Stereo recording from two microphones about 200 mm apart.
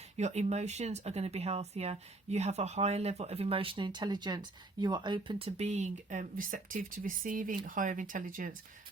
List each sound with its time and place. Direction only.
0.2 s speech: 35° right (ahead or behind)
5.5 s speech: 35° right (ahead or behind)